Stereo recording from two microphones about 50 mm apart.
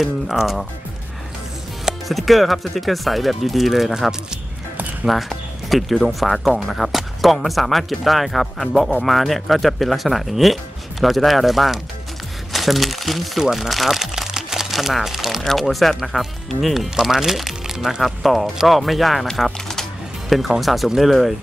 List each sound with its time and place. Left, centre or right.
0.0 s speech: centre
2.0 s speech: centre
5.0 s music: centre
6.0 s speech: centre
18.0 s speech: centre